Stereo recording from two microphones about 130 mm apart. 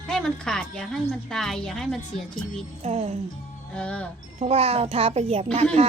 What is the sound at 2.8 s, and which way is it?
Speech, 55° right (ahead or behind).